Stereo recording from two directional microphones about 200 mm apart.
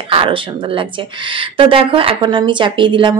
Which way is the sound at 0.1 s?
25° right (ahead or behind).